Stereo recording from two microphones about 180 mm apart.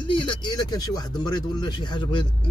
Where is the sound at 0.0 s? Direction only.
30° left (ahead or behind).